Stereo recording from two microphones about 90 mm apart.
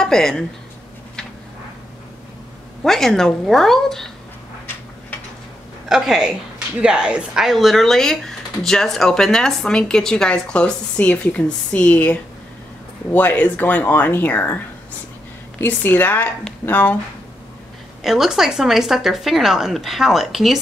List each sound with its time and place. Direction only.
0.0 s a woman's voice: 5° left (ahead or behind)
2.8 s speech: 5° left (ahead or behind)
5.9 s a woman's voice: 5° right (ahead or behind); by 14.6 s 20° left (ahead or behind)
15.6 s speech: 20° left (ahead or behind)
18.0 s speech: 5° right (ahead or behind)